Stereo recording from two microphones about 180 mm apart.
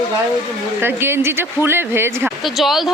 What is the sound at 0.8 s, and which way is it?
Speech, 10° right (ahead or behind).